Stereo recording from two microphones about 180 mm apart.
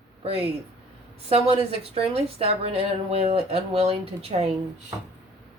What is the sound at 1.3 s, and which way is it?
Speech, 35° right (ahead or behind).